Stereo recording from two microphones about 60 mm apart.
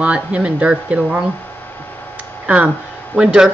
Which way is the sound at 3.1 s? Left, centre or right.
Centre.